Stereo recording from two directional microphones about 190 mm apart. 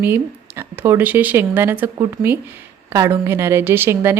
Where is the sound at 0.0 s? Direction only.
10° right (ahead or behind).